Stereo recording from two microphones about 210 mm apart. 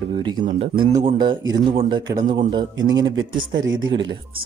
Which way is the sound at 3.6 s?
65° right (ahead or behind).